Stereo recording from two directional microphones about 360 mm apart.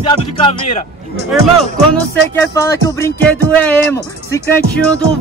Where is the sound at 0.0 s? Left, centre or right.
Centre.